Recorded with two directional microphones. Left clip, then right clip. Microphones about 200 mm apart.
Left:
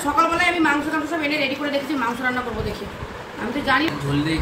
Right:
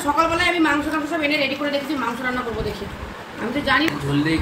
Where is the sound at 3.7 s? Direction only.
20° left (ahead or behind).